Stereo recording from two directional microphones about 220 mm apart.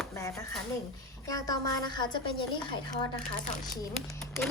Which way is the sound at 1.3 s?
15° left (ahead or behind).